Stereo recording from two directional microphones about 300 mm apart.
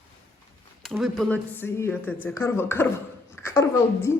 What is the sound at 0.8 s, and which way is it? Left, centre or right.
A woman's voice, centre.